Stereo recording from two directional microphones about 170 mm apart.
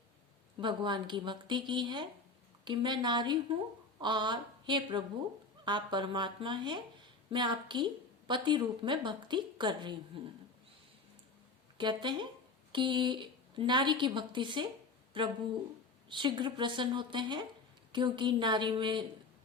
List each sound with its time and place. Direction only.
0.6 s a woman's voice: 30° right (ahead or behind)
11.8 s a woman's voice: 25° right (ahead or behind)